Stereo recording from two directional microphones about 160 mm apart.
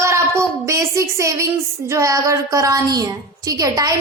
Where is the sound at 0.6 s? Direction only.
20° right (ahead or behind).